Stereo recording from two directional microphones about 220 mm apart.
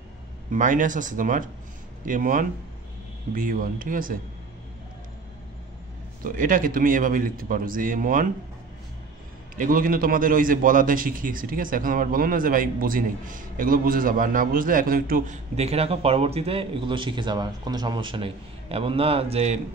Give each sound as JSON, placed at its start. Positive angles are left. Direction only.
{"t": 0.5, "sound": "a man's voice", "side_deg": -35}
{"t": 6.2, "sound": "a man's voice", "side_deg": -40}
{"t": 9.6, "sound": "a man's voice", "side_deg": -40}